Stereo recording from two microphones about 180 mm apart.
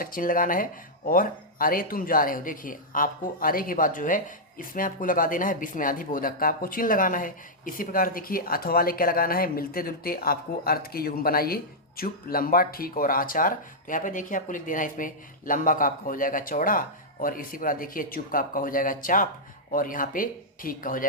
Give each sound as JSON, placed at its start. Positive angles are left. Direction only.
{"t": 0.0, "sound": "speech", "side_deg": 50}